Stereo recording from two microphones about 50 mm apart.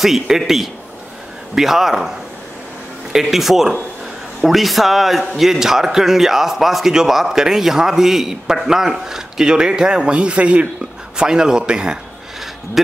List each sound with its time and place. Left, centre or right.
0.0 s a man's voice: centre; by 10.7 s right
11.1 s a man's voice: centre
12.8 s a man's voice: centre